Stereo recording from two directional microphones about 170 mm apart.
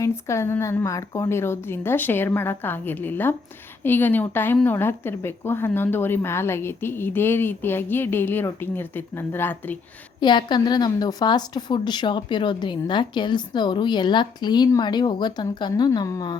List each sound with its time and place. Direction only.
0.0 s speech: 15° left (ahead or behind)
10.2 s a woman's voice: 25° left (ahead or behind)